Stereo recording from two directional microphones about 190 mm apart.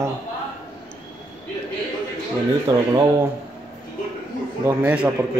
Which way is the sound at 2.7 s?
20° right (ahead or behind).